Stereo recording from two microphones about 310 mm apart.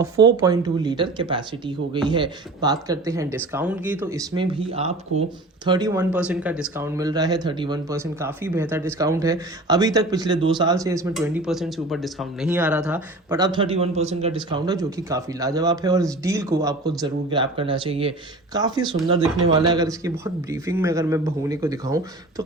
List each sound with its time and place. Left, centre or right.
0.0 s speech: centre